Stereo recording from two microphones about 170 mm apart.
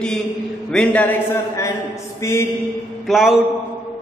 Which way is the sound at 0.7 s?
5° left (ahead or behind).